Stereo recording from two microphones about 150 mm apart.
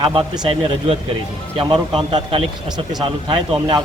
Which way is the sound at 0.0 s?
30° right (ahead or behind).